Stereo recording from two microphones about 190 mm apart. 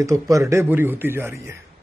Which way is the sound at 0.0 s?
15° right (ahead or behind).